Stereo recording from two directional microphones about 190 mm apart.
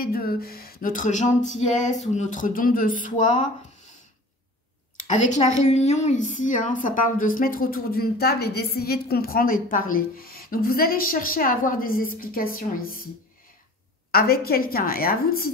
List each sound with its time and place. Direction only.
0.0 s speech: 50° left (ahead or behind)
4.9 s a woman's voice: 40° left (ahead or behind)
14.1 s speech: 50° left (ahead or behind)